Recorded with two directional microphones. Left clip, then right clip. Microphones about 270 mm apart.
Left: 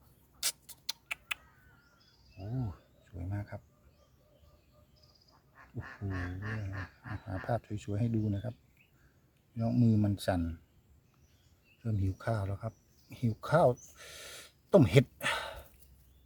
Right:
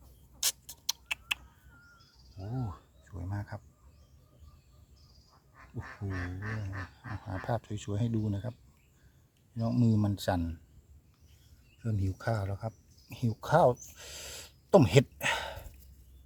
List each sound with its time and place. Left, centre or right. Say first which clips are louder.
0.9 s a sound: right 4 dB; centre
2.6 s a sound: right 4 dB; centre
5.5 s dog: right 1 dB; centre
7.4 s speech: even; centre
9.6 s speech: even; centre
11.8 s speech: right 1 dB; centre